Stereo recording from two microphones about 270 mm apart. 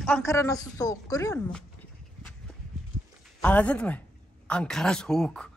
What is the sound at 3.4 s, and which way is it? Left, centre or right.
Speech, centre.